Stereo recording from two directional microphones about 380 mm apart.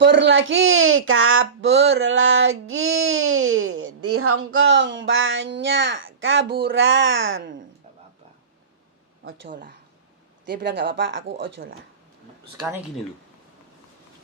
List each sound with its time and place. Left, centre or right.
0.0 s speech: right
9.2 s speech: right